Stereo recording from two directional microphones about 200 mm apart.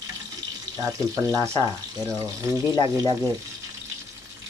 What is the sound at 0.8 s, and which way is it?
Speech, 15° right (ahead or behind).